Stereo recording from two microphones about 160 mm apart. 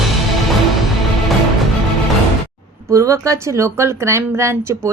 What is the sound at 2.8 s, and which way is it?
Speech, 20° right (ahead or behind).